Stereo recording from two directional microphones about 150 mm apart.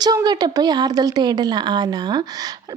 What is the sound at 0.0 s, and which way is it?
A woman's voice, 25° right (ahead or behind).